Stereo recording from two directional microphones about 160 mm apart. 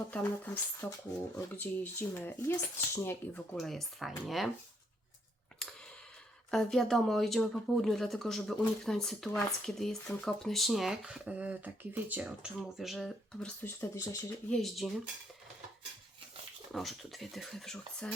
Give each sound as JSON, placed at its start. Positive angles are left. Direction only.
{"t": 0.1, "sound": "speech", "side_deg": 10}
{"t": 6.5, "sound": "speech", "side_deg": 0}
{"t": 13.6, "sound": "speech", "side_deg": 15}
{"t": 14.5, "sound": "speech", "side_deg": 0}
{"t": 16.7, "sound": "speech", "side_deg": 0}